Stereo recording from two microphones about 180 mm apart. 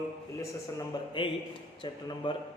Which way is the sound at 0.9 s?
20° left (ahead or behind).